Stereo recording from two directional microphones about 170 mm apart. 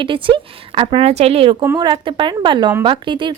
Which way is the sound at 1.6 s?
20° right (ahead or behind).